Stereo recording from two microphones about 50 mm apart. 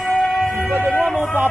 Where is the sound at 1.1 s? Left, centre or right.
Right.